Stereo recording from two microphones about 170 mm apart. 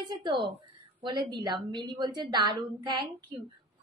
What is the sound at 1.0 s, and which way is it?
A woman's voice, 25° right (ahead or behind).